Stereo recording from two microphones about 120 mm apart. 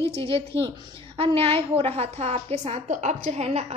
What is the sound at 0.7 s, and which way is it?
A woman's voice, 50° right (ahead or behind).